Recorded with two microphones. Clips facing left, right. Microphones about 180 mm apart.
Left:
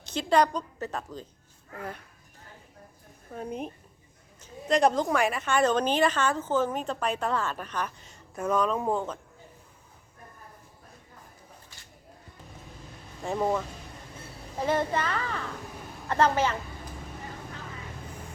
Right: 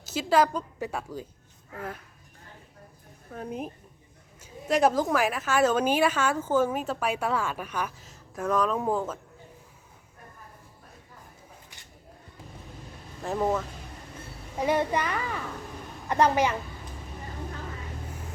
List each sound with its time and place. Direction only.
0.0 s a woman's voice: 5° right (ahead or behind)
3.3 s a woman's voice: centre (ahead or behind)
13.2 s speech: centre (ahead or behind)
14.6 s a woman's voice: 10° right (ahead or behind)